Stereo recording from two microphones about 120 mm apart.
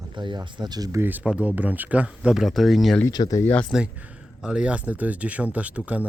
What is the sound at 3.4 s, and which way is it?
Speech, 10° left (ahead or behind).